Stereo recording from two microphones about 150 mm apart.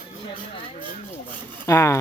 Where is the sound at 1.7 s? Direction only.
15° left (ahead or behind).